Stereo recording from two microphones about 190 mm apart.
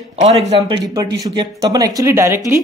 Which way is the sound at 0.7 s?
20° right (ahead or behind).